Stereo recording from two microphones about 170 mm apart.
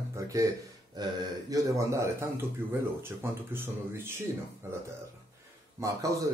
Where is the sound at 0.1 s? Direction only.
20° right (ahead or behind).